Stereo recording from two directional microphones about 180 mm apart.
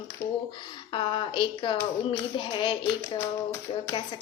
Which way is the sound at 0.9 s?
25° left (ahead or behind).